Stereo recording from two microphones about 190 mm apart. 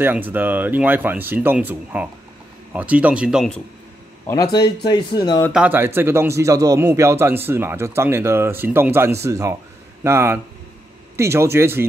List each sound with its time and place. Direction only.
0.0 s a man's voice: 10° right (ahead or behind)
4.3 s speech: 15° left (ahead or behind)
5.5 s a man's voice: 10° right (ahead or behind)